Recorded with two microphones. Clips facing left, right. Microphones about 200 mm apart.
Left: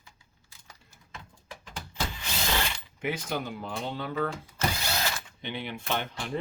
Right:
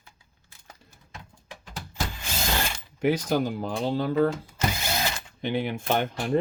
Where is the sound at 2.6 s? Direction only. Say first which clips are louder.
Right 8 dB; 40° right (ahead or behind).